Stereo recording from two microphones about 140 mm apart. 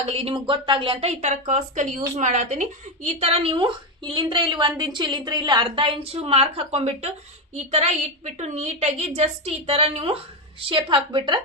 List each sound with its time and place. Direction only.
0.0 s a woman's voice: 45° right (ahead or behind)